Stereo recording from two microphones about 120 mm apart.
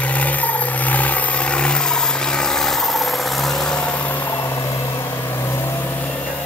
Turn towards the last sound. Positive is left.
turn(degrees=15)  # may be behind; listen again after turning